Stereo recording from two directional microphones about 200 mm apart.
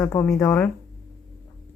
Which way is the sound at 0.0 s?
15° left (ahead or behind).